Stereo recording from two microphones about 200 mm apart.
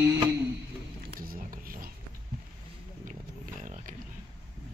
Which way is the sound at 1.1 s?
45° right (ahead or behind).